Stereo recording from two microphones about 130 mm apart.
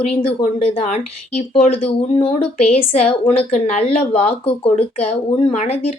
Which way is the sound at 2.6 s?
55° left (ahead or behind).